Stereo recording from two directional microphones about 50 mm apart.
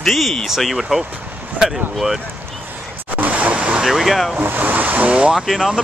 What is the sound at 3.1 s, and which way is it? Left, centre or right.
Waves, right.